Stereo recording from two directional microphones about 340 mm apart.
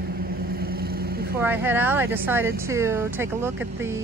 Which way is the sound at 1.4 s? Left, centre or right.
Centre.